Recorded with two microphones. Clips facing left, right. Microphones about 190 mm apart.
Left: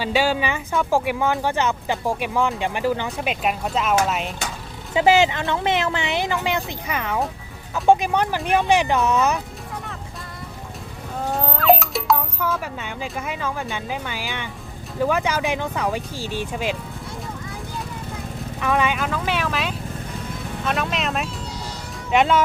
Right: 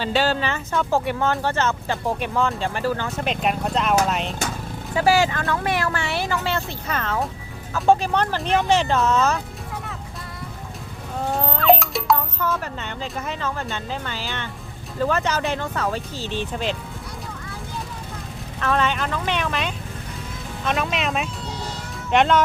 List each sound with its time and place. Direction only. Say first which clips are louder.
0.0 s speech: left 1 dB; 10° left (ahead or behind)
4.9 s speech: left 2 dB; 20° left (ahead or behind)
11.3 s speech: even; centre (ahead or behind)
18.6 s speech: left 1 dB; 10° left (ahead or behind)